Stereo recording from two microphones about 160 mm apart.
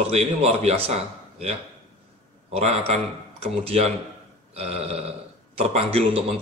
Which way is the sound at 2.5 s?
40° right (ahead or behind).